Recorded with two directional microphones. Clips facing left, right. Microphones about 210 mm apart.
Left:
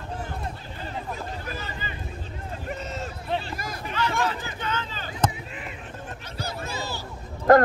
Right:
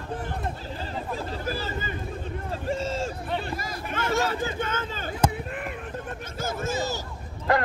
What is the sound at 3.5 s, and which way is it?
Hubbub, 50° left (ahead or behind).